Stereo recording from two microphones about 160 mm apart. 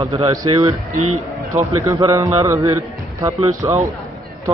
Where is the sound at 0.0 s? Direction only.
20° right (ahead or behind).